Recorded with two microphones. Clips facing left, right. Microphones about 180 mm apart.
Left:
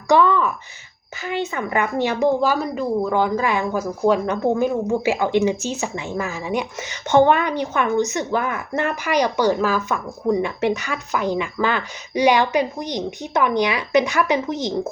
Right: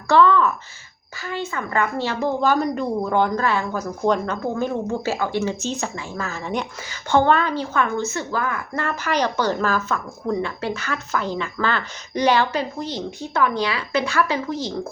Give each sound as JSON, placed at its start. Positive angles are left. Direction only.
{"t": 0.1, "sound": "a sound", "side_deg": 15}
{"t": 1.2, "sound": "a woman's voice", "side_deg": 20}
{"t": 3.4, "sound": "a woman's voice", "side_deg": 15}